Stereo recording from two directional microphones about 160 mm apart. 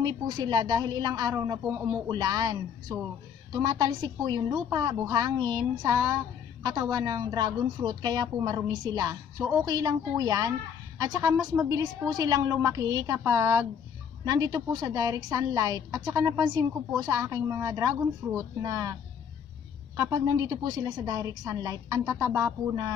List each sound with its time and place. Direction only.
0.0 s a woman's voice: 25° right (ahead or behind)
20.0 s a woman's voice: 25° right (ahead or behind)